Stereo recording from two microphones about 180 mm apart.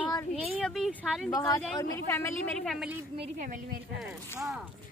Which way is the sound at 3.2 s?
45° right (ahead or behind).